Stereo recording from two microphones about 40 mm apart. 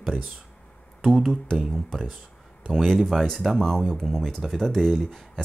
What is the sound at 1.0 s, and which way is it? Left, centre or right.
Speech, centre.